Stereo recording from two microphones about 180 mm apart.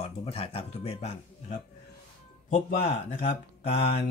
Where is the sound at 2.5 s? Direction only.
50° left (ahead or behind).